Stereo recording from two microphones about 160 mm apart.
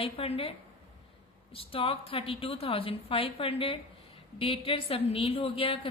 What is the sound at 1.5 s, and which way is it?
Speech, 35° left (ahead or behind).